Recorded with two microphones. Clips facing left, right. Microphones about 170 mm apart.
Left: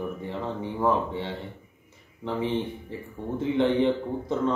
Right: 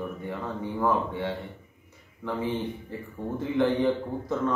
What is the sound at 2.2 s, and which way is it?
Speech, 25° left (ahead or behind).